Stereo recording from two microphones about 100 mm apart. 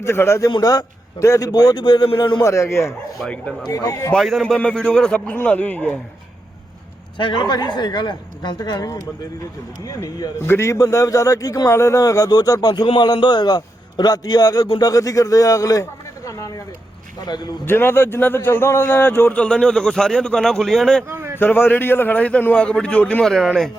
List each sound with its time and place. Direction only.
0.0 s a man's voice: 25° left (ahead or behind); by 2.0 s 45° left (ahead or behind)
2.4 s a man's voice: 30° left (ahead or behind)
3.2 s a man's voice: 10° left (ahead or behind)
3.7 s a man's voice: 35° left (ahead or behind)
4.1 s a man's voice: centre (ahead or behind)
7.2 s a man's voice: 55° left (ahead or behind); by 10.3 s 40° left (ahead or behind)
10.4 s a man's voice: 25° left (ahead or behind); by 17.5 s 45° left (ahead or behind)
17.7 s a man's voice: 25° left (ahead or behind); by 21.0 s 5° left (ahead or behind)
21.1 s a sound: 25° right (ahead or behind)
21.3 s a man's voice: 20° left (ahead or behind); by 23.7 s 5° left (ahead or behind)